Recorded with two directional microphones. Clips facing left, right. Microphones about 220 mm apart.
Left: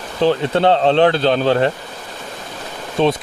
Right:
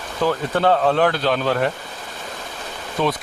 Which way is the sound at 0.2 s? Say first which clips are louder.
Left 5 dB; 25° left (ahead or behind).